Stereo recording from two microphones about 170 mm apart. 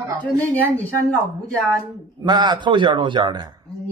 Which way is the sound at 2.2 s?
25° right (ahead or behind).